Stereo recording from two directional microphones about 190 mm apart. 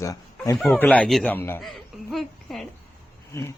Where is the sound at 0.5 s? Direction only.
Centre (ahead or behind).